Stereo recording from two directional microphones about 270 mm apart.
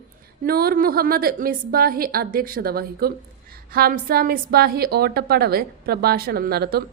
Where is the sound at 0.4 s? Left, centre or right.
Right.